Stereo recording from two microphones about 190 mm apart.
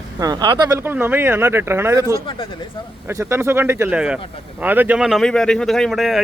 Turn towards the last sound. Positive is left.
turn(degrees=0)  # may be behind; listen again after turning